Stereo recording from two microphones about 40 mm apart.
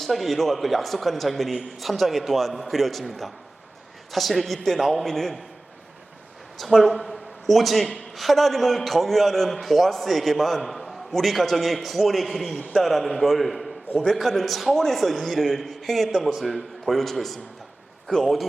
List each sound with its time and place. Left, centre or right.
0.0 s a man's voice: centre
6.6 s a man's voice: centre